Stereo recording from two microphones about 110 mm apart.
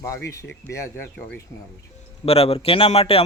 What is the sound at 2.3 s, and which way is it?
Speech, 65° left (ahead or behind).